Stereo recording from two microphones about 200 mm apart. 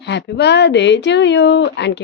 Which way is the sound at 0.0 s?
60° left (ahead or behind).